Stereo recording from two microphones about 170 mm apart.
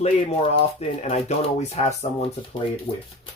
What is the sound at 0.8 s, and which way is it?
Speech, 40° left (ahead or behind).